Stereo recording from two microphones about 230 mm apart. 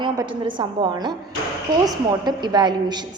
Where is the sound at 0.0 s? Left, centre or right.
Centre.